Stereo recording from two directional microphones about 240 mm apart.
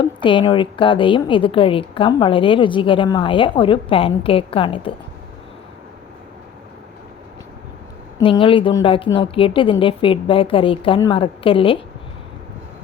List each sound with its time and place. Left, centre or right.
0.0 s a woman's voice: left
8.2 s a woman's voice: left